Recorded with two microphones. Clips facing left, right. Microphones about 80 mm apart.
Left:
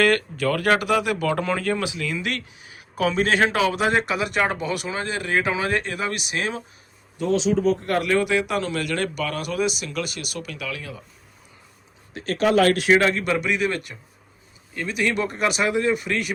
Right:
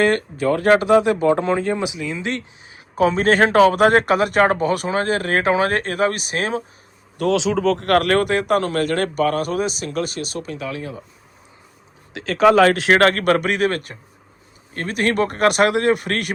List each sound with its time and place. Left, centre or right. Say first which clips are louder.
0.0 s speech: right 2 dB; right
7.2 s speech: right 2 dB; right
12.1 s speech: right 3 dB; right
12.8 s speech: right 4 dB; right